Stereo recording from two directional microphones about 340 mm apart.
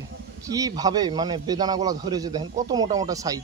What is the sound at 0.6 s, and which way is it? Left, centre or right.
Speech, centre.